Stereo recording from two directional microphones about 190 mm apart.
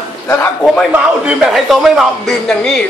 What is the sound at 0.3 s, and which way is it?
Speech, 10° left (ahead or behind).